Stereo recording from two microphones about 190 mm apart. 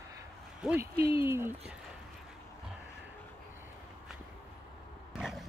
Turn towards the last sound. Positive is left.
turn(degrees=-5)  # may be behind; listen again after turning